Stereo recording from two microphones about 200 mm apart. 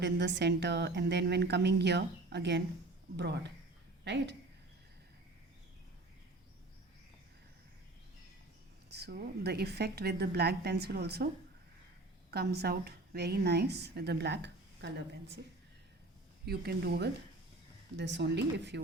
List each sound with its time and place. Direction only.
0.0 s a woman's voice: 60° right (ahead or behind)
8.9 s a woman's voice: 55° right (ahead or behind)
12.3 s a woman's voice: 55° right (ahead or behind)
16.5 s a woman's voice: 50° right (ahead or behind)